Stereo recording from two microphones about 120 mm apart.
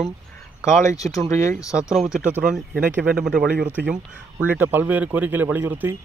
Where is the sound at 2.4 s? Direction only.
5° right (ahead or behind).